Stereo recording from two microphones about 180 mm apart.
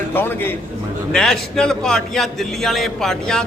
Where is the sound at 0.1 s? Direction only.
10° left (ahead or behind).